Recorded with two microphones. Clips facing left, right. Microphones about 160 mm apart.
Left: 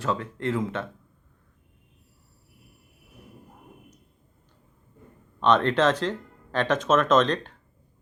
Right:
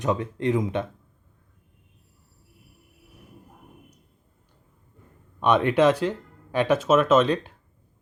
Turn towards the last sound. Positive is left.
turn(degrees=-10)  # may be behind; listen again after turning